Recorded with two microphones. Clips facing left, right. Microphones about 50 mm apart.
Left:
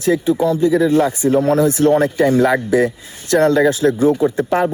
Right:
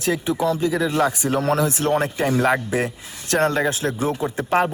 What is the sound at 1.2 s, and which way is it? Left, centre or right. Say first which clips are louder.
Speech: left 7 dB; centre.